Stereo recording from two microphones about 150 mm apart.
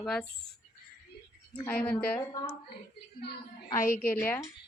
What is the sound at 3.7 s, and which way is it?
Speech, 20° left (ahead or behind).